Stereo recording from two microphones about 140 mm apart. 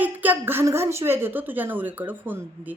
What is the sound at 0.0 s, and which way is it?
Speech, 10° right (ahead or behind).